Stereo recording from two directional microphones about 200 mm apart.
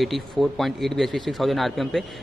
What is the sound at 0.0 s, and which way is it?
A man's voice, centre (ahead or behind).